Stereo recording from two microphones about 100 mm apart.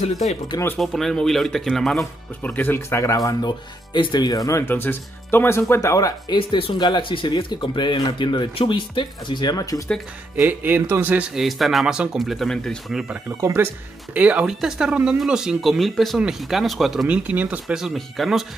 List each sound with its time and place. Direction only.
0.7 s speech: 5° left (ahead or behind)
2.4 s speech: 15° left (ahead or behind)
3.4 s speech: 50° left (ahead or behind)
6.3 s speech: 55° left (ahead or behind); by 9.8 s 35° left (ahead or behind)
10.3 s speech: 20° right (ahead or behind)
11.3 s speech: centre (ahead or behind)
13.4 s speech: 30° right (ahead or behind)
14.1 s speech: 15° right (ahead or behind)
17.3 s speech: 15° right (ahead or behind); by 18.4 s centre (ahead or behind)